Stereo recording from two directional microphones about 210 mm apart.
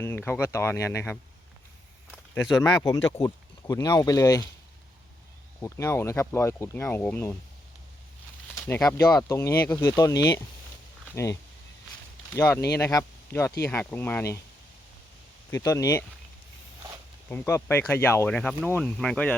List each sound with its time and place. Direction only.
0.0 s speech: 10° left (ahead or behind)
2.3 s speech: 15° left (ahead or behind)
5.5 s speech: 10° left (ahead or behind)
8.5 s speech: 15° left (ahead or behind)
15.4 s speech: 15° left (ahead or behind)
17.2 s speech: 10° left (ahead or behind)